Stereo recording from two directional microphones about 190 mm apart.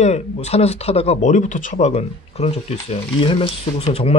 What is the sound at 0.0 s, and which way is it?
Speech, 35° left (ahead or behind).